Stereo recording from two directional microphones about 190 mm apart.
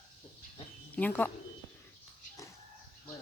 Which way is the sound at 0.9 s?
10° left (ahead or behind).